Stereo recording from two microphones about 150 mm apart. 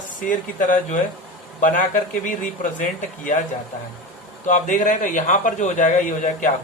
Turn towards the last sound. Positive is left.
turn(degrees=60)  # may be behind; listen again after turning